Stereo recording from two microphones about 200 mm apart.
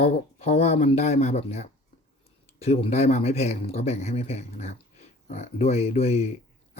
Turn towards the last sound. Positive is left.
turn(degrees=30)  # may be behind; listen again after turning